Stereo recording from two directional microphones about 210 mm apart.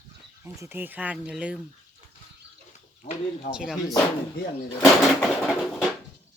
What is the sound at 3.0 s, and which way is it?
Speech, 35° left (ahead or behind).